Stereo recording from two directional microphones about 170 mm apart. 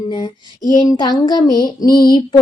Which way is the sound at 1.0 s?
25° left (ahead or behind).